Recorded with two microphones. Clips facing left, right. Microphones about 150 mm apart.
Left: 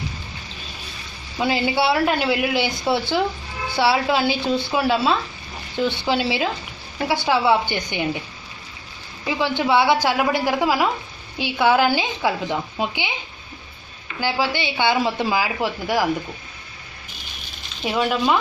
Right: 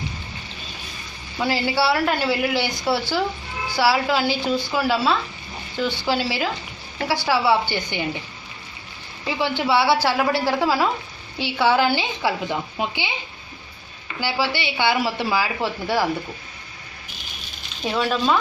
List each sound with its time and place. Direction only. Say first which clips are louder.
1.4 s a woman's voice: left 1 dB; 20° left (ahead or behind)
9.2 s a woman's voice: left 1 dB; 15° left (ahead or behind)
14.2 s a woman's voice: left 1 dB; 15° left (ahead or behind)
17.8 s a woman's voice: left 1 dB; 15° left (ahead or behind)